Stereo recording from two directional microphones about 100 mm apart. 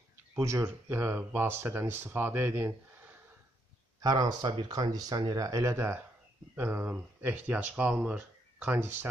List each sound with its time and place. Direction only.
0.4 s speech: 30° right (ahead or behind)
4.0 s speech: 40° right (ahead or behind); by 8.2 s 15° right (ahead or behind)